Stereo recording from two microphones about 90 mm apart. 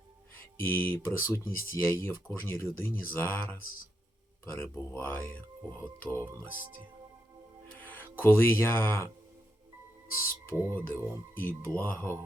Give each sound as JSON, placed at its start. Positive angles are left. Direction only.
{"t": 0.3, "sound": "music", "side_deg": 25}
{"t": 1.0, "sound": "speech", "side_deg": 30}
{"t": 7.8, "sound": "speech", "side_deg": 20}
{"t": 10.2, "sound": "speech", "side_deg": 30}